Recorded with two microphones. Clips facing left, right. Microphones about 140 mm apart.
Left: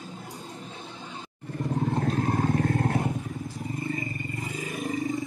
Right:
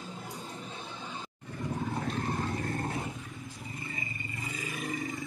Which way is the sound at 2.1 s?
55° left (ahead or behind).